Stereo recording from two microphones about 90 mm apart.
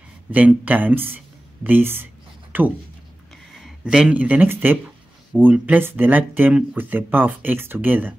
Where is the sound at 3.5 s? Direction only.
5° right (ahead or behind).